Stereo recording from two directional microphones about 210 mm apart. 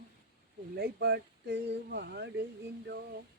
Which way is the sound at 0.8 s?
50° right (ahead or behind).